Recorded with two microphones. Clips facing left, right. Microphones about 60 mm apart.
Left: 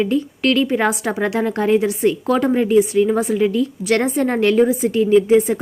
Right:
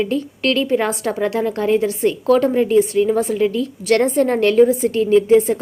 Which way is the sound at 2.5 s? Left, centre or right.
Centre.